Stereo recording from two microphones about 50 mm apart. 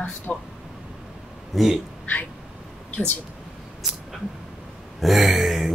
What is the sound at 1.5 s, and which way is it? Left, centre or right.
Speech, centre.